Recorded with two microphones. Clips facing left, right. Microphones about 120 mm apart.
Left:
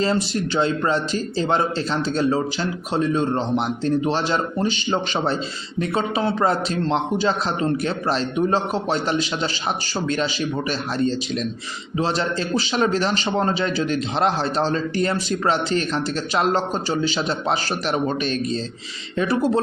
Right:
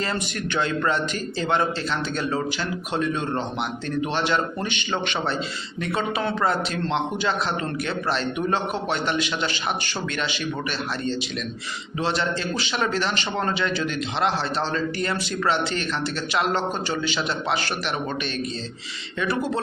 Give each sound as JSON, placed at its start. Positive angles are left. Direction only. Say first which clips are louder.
{"t": 0.0, "sound": "a man's voice", "louder": "left 6 dB", "side_deg": 30}
{"t": 10.7, "sound": "a man's voice", "louder": "left 5 dB", "side_deg": 40}